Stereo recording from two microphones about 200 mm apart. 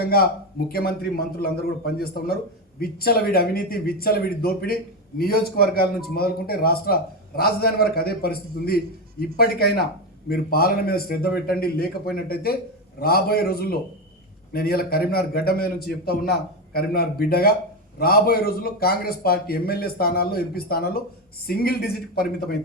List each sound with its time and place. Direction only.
0.0 s a man's voice: 50° left (ahead or behind)